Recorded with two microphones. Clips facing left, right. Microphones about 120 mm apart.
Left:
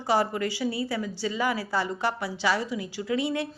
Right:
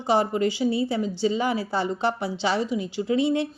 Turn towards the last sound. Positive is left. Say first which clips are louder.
# right 5 dB
turn(degrees=-25)  # may be behind; listen again after turning